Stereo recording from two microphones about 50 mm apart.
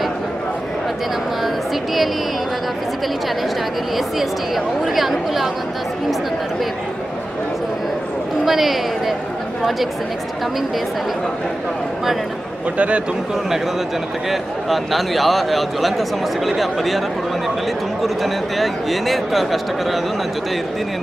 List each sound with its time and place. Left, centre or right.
4.8 s a man's voice: centre
8.5 s a man's voice: centre
12.7 s a man's voice: right
14.3 s a man's voice: centre
18.0 s a man's voice: centre